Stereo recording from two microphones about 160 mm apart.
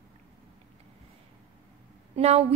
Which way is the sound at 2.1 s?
40° right (ahead or behind).